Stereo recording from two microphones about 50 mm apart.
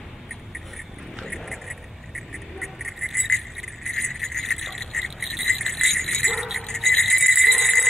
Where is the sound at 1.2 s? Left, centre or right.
Centre.